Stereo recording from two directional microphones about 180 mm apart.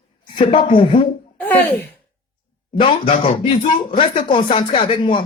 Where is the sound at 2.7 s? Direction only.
30° left (ahead or behind).